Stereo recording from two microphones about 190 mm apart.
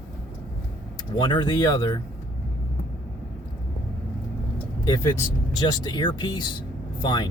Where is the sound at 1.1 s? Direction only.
25° left (ahead or behind).